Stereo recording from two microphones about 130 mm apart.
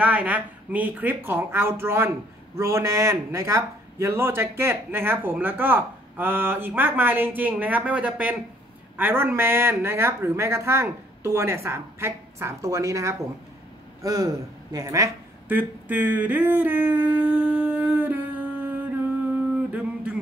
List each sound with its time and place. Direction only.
0.0 s a man's voice: 10° right (ahead or behind); by 15.0 s 25° right (ahead or behind)
15.4 s a sound: 15° right (ahead or behind)
19.7 s music: 10° right (ahead or behind)